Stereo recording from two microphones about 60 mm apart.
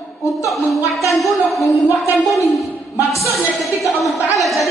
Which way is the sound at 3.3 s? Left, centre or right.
Centre.